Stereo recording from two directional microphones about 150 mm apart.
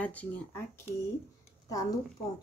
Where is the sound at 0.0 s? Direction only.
10° left (ahead or behind).